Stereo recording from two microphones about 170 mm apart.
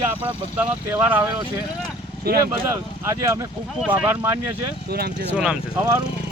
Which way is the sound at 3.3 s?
20° right (ahead or behind).